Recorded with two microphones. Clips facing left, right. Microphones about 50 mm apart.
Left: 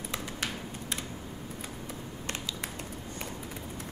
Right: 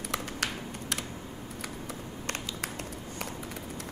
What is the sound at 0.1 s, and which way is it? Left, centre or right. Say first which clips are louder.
Typing: right 3 dB; right.